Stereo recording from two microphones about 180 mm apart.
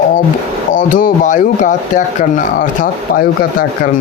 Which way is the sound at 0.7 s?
50° left (ahead or behind).